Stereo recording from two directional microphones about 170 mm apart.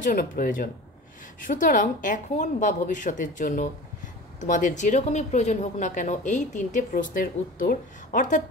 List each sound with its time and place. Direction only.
0.0 s speech: 50° left (ahead or behind)